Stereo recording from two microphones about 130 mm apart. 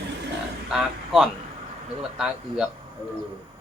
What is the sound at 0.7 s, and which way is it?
Speech, 5° right (ahead or behind).